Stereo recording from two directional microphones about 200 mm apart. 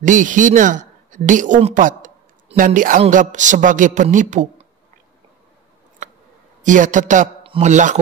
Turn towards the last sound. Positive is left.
turn(degrees=-35)  # may be behind; listen again after turning